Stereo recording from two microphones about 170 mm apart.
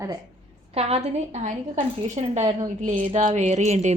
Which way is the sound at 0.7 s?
40° right (ahead or behind).